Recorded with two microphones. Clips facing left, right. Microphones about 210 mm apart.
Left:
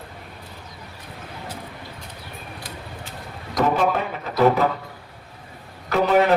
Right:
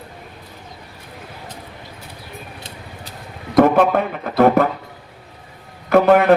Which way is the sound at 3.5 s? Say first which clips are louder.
Right 7 dB; 55° right (ahead or behind).